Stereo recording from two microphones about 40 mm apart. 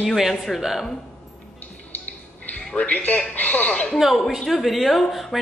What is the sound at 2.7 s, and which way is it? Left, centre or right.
Speech, left.